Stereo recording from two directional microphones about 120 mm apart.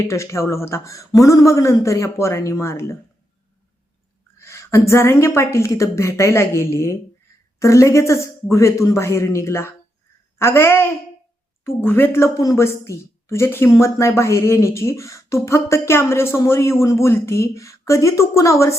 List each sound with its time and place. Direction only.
0.0 s speech: 25° left (ahead or behind)
4.4 s speech: 25° left (ahead or behind)